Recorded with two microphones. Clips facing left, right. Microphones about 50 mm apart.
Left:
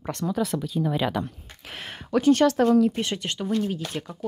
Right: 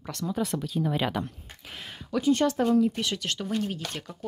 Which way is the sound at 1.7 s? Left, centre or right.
Left.